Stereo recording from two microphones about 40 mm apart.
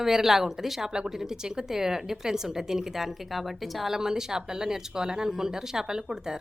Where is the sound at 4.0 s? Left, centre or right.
Centre.